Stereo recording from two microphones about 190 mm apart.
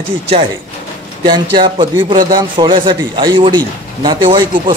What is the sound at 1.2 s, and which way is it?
A man's voice, 25° right (ahead or behind).